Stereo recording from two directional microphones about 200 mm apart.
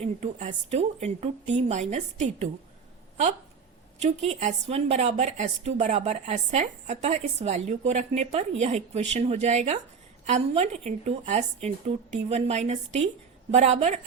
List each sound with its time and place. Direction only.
0.0 s speech: 35° right (ahead or behind)
4.0 s speech: 35° right (ahead or behind)